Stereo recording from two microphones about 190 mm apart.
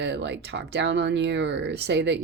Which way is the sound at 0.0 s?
65° right (ahead or behind).